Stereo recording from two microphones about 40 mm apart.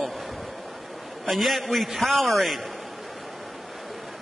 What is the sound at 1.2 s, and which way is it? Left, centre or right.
A man's voice, centre.